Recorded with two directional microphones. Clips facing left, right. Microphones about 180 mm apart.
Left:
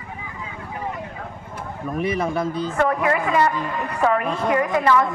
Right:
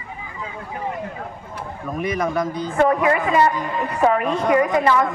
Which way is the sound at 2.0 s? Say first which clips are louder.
Even; 30° left (ahead or behind).